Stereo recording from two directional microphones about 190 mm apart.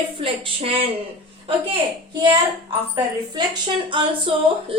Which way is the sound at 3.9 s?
25° right (ahead or behind).